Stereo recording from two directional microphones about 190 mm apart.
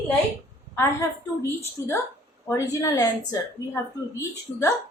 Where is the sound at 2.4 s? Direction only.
15° left (ahead or behind).